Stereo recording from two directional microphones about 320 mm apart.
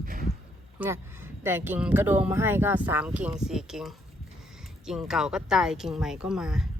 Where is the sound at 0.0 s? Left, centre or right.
Right.